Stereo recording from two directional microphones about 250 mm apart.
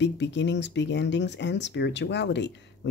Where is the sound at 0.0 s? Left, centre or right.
Left.